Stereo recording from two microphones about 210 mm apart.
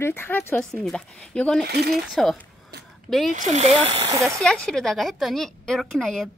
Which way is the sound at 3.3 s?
35° right (ahead or behind).